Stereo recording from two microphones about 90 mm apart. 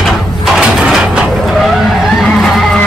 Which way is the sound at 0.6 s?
5° right (ahead or behind).